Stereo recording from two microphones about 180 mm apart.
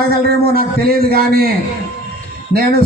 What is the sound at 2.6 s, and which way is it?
Speech, 55° right (ahead or behind).